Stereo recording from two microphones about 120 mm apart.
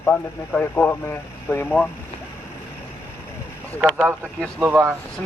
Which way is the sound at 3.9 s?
10° right (ahead or behind).